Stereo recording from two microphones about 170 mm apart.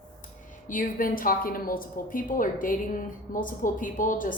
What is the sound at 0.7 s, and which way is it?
A woman's voice, 50° left (ahead or behind).